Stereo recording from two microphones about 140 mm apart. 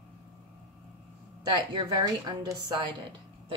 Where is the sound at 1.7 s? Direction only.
25° right (ahead or behind).